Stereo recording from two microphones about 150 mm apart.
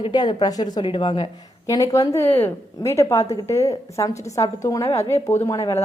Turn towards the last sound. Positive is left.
turn(degrees=20)  # may be behind; listen again after turning